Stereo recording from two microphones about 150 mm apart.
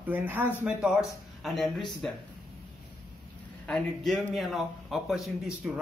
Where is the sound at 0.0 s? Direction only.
10° right (ahead or behind).